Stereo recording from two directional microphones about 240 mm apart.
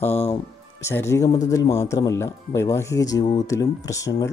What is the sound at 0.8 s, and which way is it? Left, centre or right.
Speech, centre.